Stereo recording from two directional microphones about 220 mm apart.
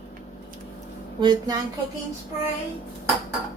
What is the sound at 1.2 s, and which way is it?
Speech, 20° right (ahead or behind).